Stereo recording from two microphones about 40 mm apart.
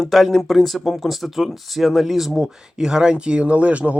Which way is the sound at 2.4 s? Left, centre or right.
Centre.